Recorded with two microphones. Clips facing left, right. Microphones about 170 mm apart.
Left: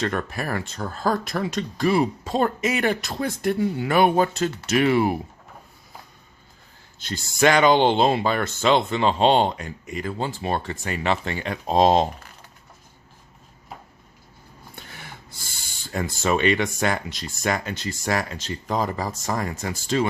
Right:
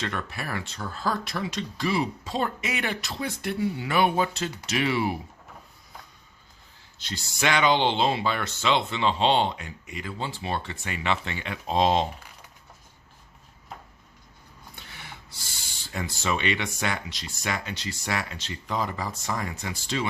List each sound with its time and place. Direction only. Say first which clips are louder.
0.0 s speech: left 6 dB; 45° left (ahead or behind)
7.0 s speech: left 8 dB; 50° left (ahead or behind)
14.8 s speech: left 3 dB; 45° left (ahead or behind)